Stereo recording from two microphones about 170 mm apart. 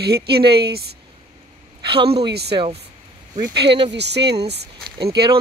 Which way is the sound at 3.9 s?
80° right.